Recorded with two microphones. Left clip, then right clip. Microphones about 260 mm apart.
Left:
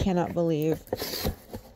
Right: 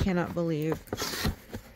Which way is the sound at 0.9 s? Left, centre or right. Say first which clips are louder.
Left 1 dB; centre.